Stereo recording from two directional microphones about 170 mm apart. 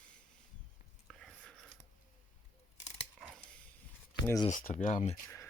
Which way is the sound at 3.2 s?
Centre (ahead or behind).